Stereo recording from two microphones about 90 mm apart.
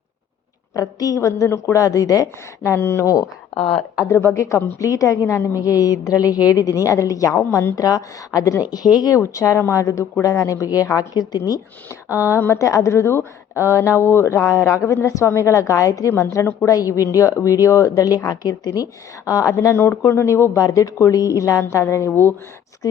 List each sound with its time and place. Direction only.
0.7 s a woman's voice: 40° left (ahead or behind)
2.6 s a woman's voice: 30° left (ahead or behind)
7.8 s a woman's voice: 40° left (ahead or behind)
9.2 s a woman's voice: 35° left (ahead or behind)
11.1 s speech: 50° left (ahead or behind)
12.1 s a woman's voice: 35° left (ahead or behind)
19.6 s a woman's voice: 25° left (ahead or behind)